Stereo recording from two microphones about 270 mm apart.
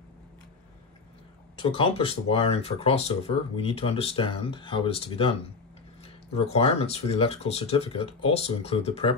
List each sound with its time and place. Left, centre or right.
1.6 s speech: centre